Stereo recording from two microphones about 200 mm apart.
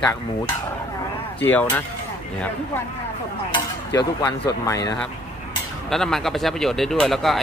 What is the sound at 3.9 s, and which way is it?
Speech, 20° left (ahead or behind).